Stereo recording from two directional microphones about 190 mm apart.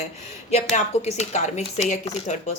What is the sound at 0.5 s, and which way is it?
Speech, 35° left (ahead or behind).